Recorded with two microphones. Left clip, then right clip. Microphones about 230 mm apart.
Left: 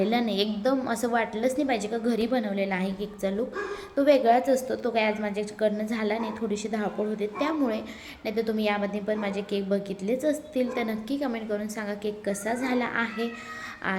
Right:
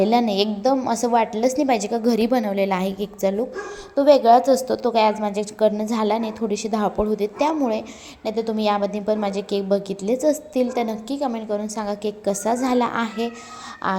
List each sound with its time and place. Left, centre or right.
0.0 s a woman's voice: right